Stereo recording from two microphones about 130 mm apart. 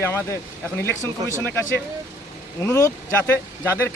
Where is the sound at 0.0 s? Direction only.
20° left (ahead or behind).